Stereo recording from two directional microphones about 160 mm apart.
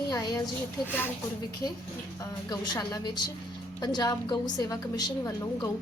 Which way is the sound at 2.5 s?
25° left (ahead or behind).